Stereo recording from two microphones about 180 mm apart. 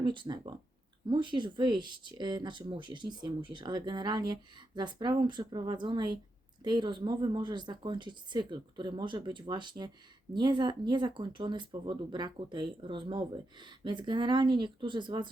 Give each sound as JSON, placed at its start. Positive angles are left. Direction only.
{"t": 0.0, "sound": "speech", "side_deg": -25}